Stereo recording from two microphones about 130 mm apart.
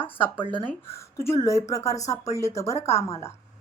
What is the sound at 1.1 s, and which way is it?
A woman's voice, 20° left (ahead or behind).